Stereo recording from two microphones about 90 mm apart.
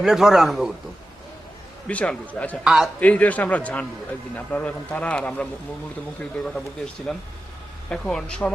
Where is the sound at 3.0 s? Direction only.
15° left (ahead or behind).